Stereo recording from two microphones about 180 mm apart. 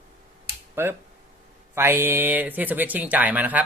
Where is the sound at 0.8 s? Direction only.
15° right (ahead or behind).